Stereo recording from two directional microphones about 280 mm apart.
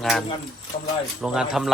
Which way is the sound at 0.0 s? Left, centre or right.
Centre.